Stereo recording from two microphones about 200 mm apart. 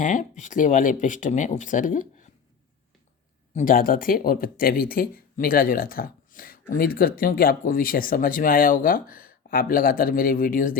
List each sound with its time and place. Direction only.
0.0 s speech: 40° left (ahead or behind)
3.5 s speech: 40° left (ahead or behind)